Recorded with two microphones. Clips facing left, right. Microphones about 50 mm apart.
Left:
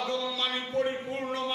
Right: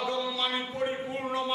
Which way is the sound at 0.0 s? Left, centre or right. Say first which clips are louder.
Right 1 dB; centre.